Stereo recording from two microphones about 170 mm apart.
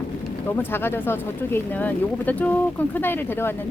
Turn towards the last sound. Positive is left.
turn(degrees=15)  # may be behind; listen again after turning